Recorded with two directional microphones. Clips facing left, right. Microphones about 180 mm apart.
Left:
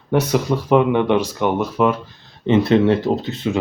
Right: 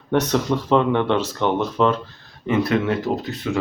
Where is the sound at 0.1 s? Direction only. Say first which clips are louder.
Left 2 dB; 10° left (ahead or behind).